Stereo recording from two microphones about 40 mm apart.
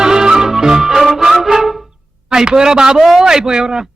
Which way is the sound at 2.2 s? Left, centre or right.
Centre.